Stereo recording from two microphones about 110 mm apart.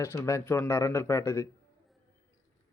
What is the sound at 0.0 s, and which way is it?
Speech, 25° left (ahead or behind).